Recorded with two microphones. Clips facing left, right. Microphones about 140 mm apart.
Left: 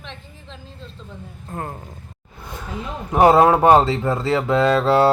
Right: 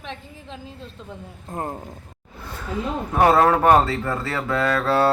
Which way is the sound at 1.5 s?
20° right (ahead or behind).